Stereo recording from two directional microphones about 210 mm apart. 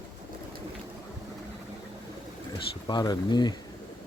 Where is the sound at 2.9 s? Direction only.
20° left (ahead or behind).